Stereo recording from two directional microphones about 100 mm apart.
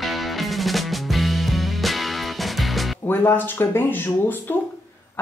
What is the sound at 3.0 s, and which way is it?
Speech, 20° left (ahead or behind).